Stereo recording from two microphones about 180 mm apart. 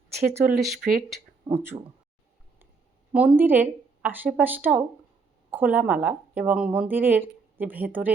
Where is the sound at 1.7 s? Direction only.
30° right (ahead or behind).